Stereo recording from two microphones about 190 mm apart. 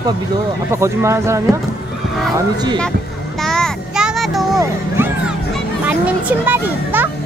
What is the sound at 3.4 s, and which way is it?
Child singing, centre (ahead or behind).